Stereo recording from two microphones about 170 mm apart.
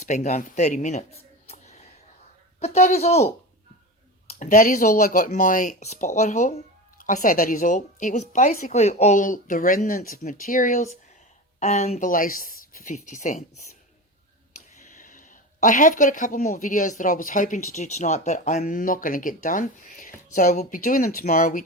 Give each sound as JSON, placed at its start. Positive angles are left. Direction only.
{"t": 0.0, "sound": "speech", "side_deg": 45}
{"t": 4.3, "sound": "a woman's voice", "side_deg": 50}
{"t": 14.9, "sound": "a woman's voice", "side_deg": 50}